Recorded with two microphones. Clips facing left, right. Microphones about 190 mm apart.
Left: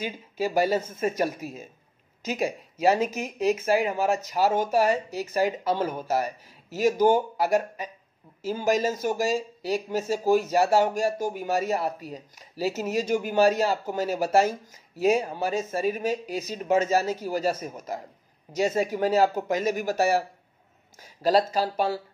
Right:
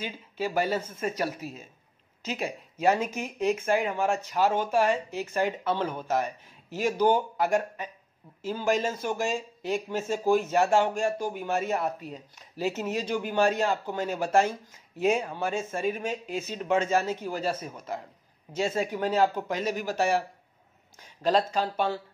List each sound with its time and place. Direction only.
0.0 s speech: 40° left (ahead or behind)
0.7 s speech: 10° left (ahead or behind)
1.4 s speech: 45° left (ahead or behind)
2.9 s speech: 35° left (ahead or behind)
3.3 s speech: 5° left (ahead or behind)
4.2 s speech: 40° left (ahead or behind)
18.9 s speech: 10° left (ahead or behind)
19.3 s speech: 45° left (ahead or behind)
21.0 s a sound: 5° left (ahead or behind)
21.7 s speech: 35° left (ahead or behind)